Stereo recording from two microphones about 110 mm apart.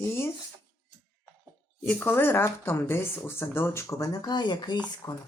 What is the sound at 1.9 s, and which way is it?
Speech, 15° left (ahead or behind).